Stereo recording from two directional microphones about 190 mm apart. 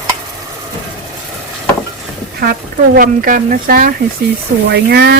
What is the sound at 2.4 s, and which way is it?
Speech, 50° right (ahead or behind).